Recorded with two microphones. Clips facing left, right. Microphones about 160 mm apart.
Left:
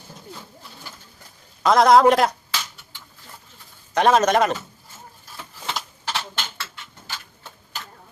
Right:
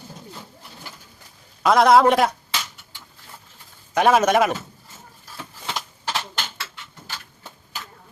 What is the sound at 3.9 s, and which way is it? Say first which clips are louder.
Speech: even; 5° right (ahead or behind).